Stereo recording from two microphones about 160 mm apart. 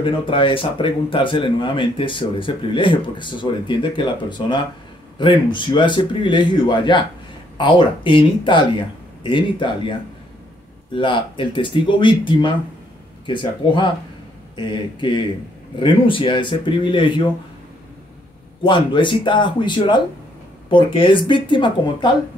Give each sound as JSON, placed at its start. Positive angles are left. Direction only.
{"t": 0.0, "sound": "a man's voice", "side_deg": 30}
{"t": 11.0, "sound": "a man's voice", "side_deg": 30}
{"t": 18.6, "sound": "a man's voice", "side_deg": 30}